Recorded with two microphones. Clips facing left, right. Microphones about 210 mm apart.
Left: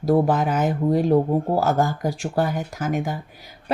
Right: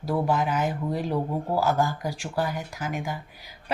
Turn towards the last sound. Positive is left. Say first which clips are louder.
# left 6 dB
turn(degrees=45)  # may be behind; listen again after turning